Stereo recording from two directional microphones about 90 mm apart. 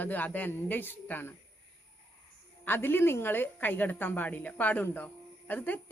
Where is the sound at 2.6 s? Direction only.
25° left (ahead or behind).